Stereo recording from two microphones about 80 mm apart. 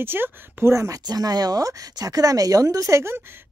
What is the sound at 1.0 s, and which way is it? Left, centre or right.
Speech, right.